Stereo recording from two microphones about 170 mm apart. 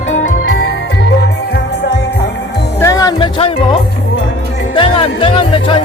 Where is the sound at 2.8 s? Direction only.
20° left (ahead or behind).